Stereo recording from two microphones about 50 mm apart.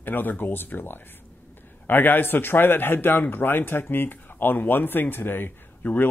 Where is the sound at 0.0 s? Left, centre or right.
Left.